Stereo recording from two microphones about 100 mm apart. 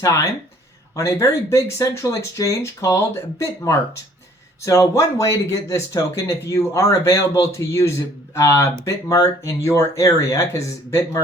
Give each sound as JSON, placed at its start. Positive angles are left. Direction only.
{"t": 0.0, "sound": "speech", "side_deg": 30}